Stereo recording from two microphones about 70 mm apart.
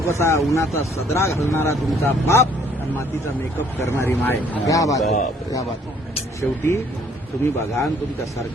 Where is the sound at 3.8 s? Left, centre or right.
Left.